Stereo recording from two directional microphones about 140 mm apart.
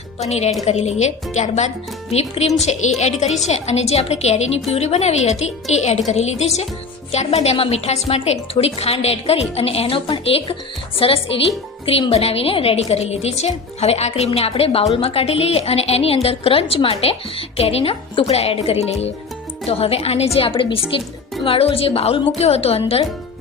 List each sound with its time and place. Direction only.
0.2 s a woman's voice: 50° left (ahead or behind)